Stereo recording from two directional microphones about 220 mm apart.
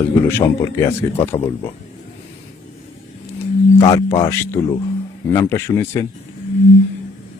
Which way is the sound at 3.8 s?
25° left (ahead or behind).